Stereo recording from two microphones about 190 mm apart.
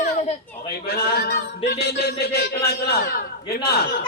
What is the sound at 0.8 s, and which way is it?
A man's voice, 55° left (ahead or behind).